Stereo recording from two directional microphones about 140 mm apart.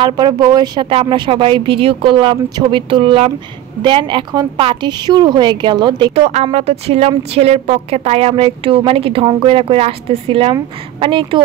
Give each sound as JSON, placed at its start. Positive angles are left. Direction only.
{"t": 0.0, "sound": "speech", "side_deg": -30}
{"t": 6.1, "sound": "a woman's voice", "side_deg": -50}